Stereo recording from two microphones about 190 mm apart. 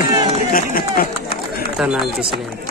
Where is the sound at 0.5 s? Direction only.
50° left (ahead or behind).